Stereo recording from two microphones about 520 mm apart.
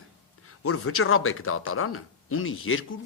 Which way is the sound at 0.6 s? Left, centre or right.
Left.